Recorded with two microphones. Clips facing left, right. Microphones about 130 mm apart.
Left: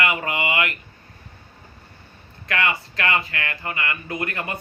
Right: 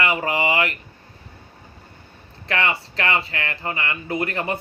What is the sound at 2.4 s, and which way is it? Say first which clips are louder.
Speech: right 1 dB; 30° right (ahead or behind).